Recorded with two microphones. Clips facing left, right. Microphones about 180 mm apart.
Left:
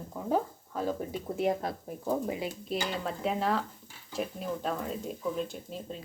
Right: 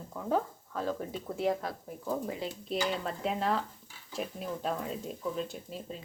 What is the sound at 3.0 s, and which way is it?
Speech, centre (ahead or behind).